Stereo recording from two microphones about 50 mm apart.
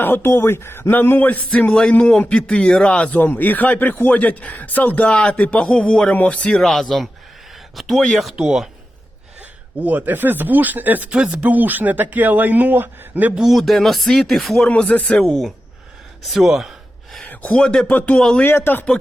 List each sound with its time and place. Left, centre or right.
0.0 s a man's voice: left
6.6 s speech: centre
8.4 s speech: centre
9.8 s speech: right
11.1 s speech: right
13.3 s speech: centre
13.6 s speech: centre
14.7 s speech: left
16.2 s speech: centre
17.2 s a sound: left
17.8 s speech: left
18.2 s speech: centre
18.4 s speech: left